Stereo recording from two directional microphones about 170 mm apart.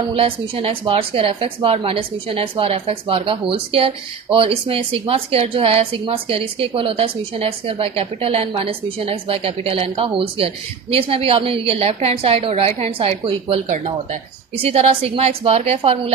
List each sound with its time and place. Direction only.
0.1 s speech: 35° right (ahead or behind)
14.6 s speech: 40° right (ahead or behind)